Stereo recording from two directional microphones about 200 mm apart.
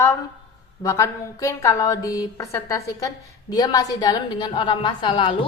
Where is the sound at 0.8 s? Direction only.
15° left (ahead or behind).